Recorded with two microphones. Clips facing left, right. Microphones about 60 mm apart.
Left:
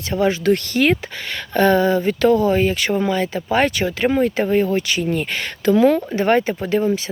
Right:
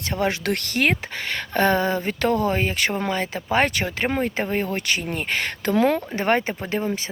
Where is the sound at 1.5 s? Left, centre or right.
Right.